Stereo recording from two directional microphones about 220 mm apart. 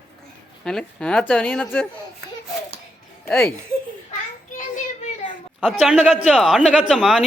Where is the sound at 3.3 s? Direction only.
10° left (ahead or behind).